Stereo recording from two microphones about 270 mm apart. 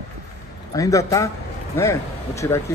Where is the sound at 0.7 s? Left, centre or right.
Centre.